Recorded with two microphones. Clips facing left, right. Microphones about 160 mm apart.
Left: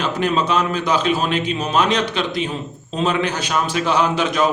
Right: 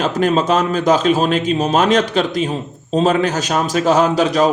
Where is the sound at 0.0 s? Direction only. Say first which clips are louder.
Right 4 dB; 45° right (ahead or behind).